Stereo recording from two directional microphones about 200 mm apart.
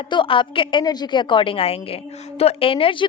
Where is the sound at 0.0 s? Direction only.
25° left (ahead or behind).